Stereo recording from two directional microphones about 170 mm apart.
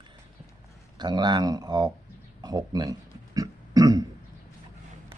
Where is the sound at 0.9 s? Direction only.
25° right (ahead or behind).